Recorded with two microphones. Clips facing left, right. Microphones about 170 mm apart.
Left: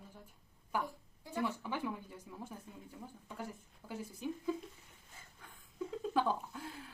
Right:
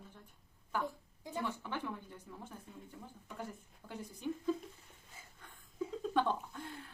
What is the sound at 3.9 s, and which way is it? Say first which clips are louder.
Speech: even; 5° left (ahead or behind).